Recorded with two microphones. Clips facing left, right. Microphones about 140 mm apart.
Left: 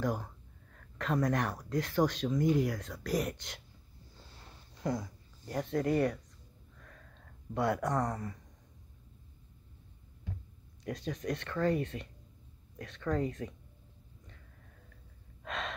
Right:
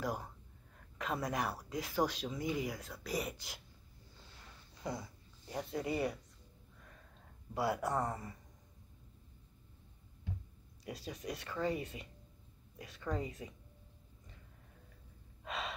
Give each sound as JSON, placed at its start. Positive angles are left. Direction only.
{"t": 0.0, "sound": "speech", "side_deg": -5}
{"t": 4.8, "sound": "speech", "side_deg": -5}
{"t": 7.5, "sound": "speech", "side_deg": -5}
{"t": 10.8, "sound": "speech", "side_deg": -5}
{"t": 15.4, "sound": "gasp", "side_deg": -5}